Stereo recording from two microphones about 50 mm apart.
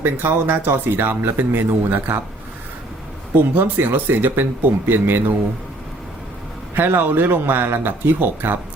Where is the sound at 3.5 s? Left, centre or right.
Right.